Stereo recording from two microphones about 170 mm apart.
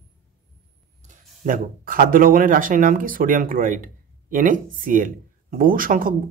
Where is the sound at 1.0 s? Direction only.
50° right (ahead or behind).